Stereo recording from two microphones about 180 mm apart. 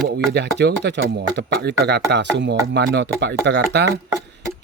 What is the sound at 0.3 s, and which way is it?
Speech, 75° right (ahead or behind).